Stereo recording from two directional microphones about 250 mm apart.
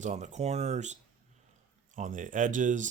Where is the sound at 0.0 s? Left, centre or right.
Right.